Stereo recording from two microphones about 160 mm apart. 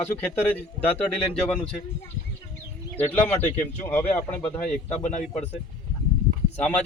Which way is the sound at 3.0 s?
10° left (ahead or behind).